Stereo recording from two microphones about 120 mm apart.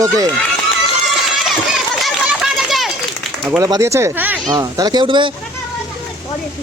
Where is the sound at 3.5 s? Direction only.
30° right (ahead or behind).